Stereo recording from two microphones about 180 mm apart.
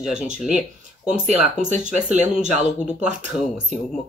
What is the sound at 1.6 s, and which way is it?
Speech, 45° right (ahead or behind).